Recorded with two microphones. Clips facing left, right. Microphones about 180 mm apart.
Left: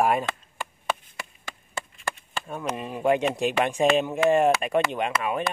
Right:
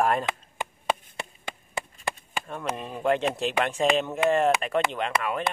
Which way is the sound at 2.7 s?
5° left (ahead or behind).